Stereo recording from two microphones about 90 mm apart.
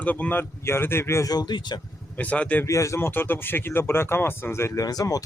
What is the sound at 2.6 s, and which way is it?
Speech, 35° left (ahead or behind).